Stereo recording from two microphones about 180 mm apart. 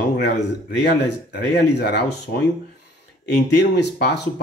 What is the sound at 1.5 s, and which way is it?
Speech, 70° left (ahead or behind).